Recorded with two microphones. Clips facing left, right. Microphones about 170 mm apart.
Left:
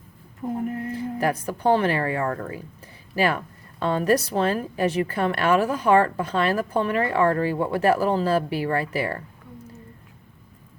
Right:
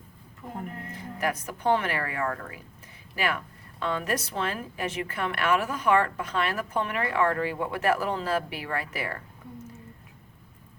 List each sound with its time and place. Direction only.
1.2 s a woman's voice: 35° left (ahead or behind)